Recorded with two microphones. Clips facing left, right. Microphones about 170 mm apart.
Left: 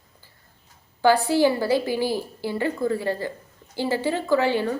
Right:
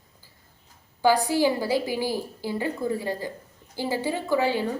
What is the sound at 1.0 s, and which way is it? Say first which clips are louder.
A woman's voice: left 3 dB; 15° right (ahead or behind).